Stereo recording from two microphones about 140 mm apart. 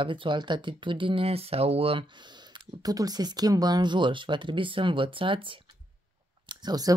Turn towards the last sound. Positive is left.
turn(degrees=-30)  # may be behind; listen again after turning